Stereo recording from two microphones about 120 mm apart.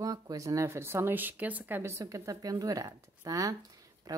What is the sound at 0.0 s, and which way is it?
Speech, 30° right (ahead or behind).